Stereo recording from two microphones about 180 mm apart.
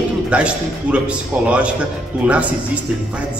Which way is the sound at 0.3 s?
5° right (ahead or behind).